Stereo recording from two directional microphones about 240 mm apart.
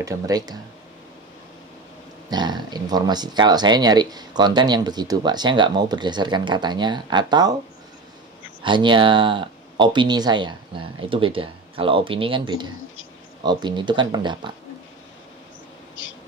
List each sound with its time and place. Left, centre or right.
0.0 s speech: centre
2.2 s speech: centre
8.6 s speech: centre